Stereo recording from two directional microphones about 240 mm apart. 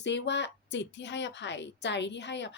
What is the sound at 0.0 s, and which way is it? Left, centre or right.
Speech, left.